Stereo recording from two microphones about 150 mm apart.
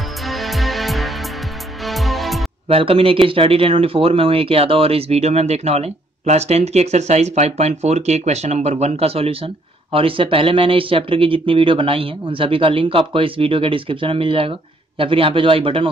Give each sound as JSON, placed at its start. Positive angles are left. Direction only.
{"t": 0.3, "sound": "music", "side_deg": 0}
{"t": 2.7, "sound": "speech", "side_deg": -40}